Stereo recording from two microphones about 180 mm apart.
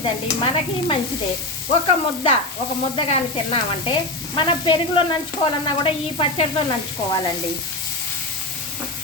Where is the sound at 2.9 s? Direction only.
30° left (ahead or behind).